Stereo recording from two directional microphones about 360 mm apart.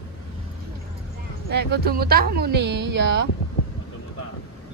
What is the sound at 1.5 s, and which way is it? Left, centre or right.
Speech, right.